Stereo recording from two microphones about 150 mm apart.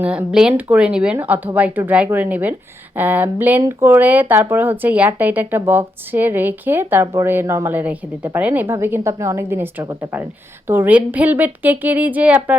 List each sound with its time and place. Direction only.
0.0 s speech: 10° right (ahead or behind)